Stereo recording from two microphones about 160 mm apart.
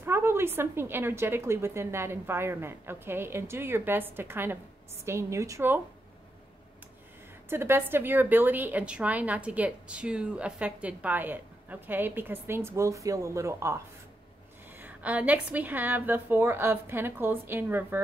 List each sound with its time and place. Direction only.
0.0 s a woman's voice: 15° right (ahead or behind)
7.4 s a woman's voice: 15° right (ahead or behind)
14.8 s a woman's voice: 10° right (ahead or behind)